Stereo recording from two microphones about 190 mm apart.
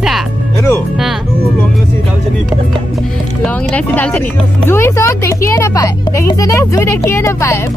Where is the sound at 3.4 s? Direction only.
5° left (ahead or behind).